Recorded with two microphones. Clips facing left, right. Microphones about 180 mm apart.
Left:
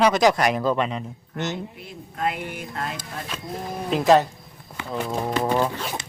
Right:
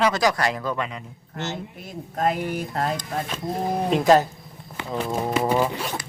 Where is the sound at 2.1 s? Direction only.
40° right (ahead or behind).